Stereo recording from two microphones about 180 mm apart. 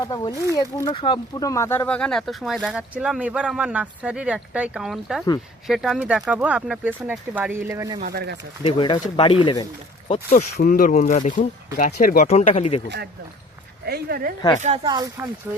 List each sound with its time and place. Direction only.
0.0 s speech: 20° left (ahead or behind); by 7.9 s 10° right (ahead or behind)
8.0 s speech: 65° right (ahead or behind)
8.6 s speech: 30° left (ahead or behind)
10.2 s speech: 50° left (ahead or behind)
12.3 s speech: 35° left (ahead or behind)
13.8 s speech: 60° right (ahead or behind)
14.8 s speech: 20° right (ahead or behind)